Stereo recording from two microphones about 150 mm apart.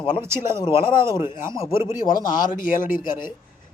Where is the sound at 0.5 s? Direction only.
30° left (ahead or behind).